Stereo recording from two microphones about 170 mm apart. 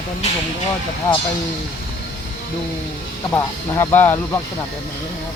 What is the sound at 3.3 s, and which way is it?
Speech, 15° left (ahead or behind).